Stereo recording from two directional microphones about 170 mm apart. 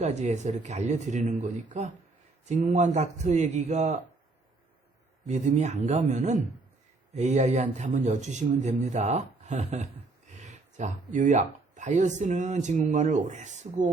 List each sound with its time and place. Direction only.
0.0 s speech: 40° right (ahead or behind)
5.2 s speech: 45° right (ahead or behind)